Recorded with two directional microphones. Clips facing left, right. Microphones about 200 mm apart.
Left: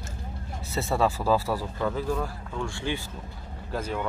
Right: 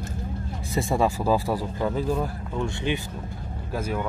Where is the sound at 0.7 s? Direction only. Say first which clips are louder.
Right 2 dB; 15° right (ahead or behind).